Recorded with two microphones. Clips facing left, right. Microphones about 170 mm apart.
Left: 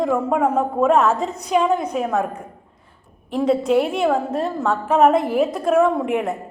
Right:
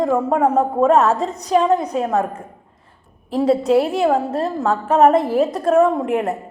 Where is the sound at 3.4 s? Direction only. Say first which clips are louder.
Right 2 dB; centre (ahead or behind).